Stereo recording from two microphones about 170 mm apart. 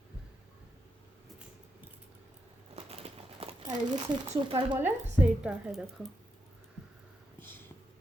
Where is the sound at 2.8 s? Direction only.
35° right (ahead or behind).